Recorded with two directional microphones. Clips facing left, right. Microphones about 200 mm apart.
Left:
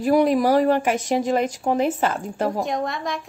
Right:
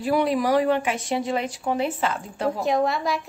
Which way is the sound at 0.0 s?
45° left (ahead or behind).